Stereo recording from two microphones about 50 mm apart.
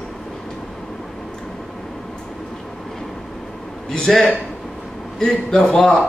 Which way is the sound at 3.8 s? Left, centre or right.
Centre.